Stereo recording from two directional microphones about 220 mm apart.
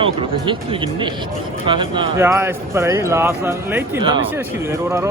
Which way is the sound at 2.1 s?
10° right (ahead or behind).